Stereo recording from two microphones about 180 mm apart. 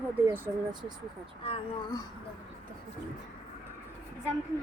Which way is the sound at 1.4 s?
30° left (ahead or behind).